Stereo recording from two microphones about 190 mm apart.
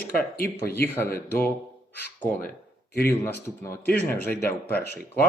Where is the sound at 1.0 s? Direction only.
10° left (ahead or behind).